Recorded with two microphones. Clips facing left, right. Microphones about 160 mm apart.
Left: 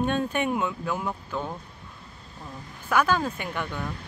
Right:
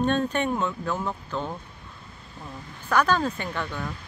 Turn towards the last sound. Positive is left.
turn(degrees=15)  # may be behind; listen again after turning